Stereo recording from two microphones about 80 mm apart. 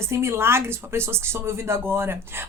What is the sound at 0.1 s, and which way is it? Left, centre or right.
Speech, right.